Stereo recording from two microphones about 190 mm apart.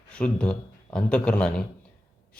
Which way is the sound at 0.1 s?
5° left (ahead or behind).